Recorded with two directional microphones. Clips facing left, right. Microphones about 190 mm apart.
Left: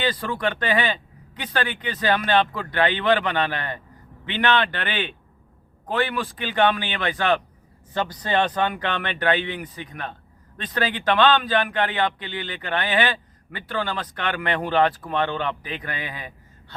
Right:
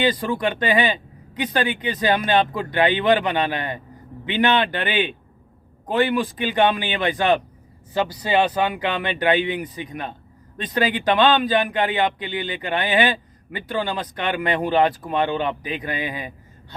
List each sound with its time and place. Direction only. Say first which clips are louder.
0.0 s a man's voice: right 4 dB; 15° right (ahead or behind)